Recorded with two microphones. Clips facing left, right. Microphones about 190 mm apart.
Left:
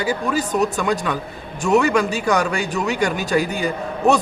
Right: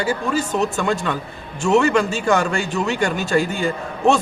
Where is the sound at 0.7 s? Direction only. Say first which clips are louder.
Even; centre (ahead or behind).